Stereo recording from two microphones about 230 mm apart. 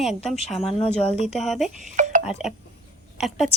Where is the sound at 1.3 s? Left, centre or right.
Centre.